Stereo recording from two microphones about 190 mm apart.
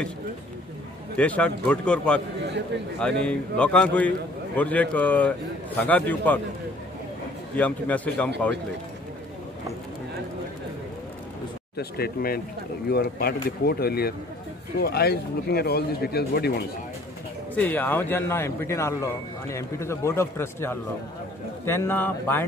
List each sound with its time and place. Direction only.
1.1 s a man's voice: 5° left (ahead or behind)
7.5 s a man's voice: 10° left (ahead or behind)
11.7 s speech: 55° left (ahead or behind)
17.6 s a man's voice: 10° left (ahead or behind)